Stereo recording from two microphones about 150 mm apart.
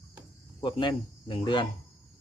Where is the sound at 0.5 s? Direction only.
30° left (ahead or behind).